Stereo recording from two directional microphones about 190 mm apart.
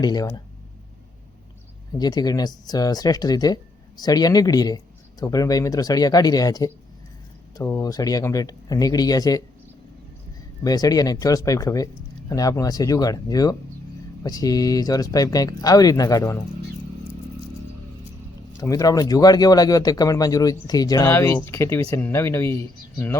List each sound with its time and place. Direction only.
0.0 s speech: 20° left (ahead or behind)
2.0 s speech: 20° left (ahead or behind)
10.6 s speech: 20° left (ahead or behind)
18.6 s speech: 20° left (ahead or behind)